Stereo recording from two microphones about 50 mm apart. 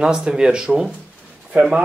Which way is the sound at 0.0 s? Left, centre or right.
Centre.